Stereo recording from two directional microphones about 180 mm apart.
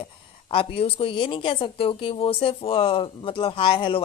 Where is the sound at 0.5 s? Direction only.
30° left (ahead or behind).